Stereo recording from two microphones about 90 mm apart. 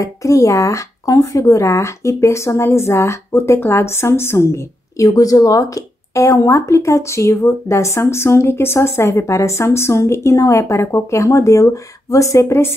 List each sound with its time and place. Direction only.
0.0 s speech: 35° left (ahead or behind)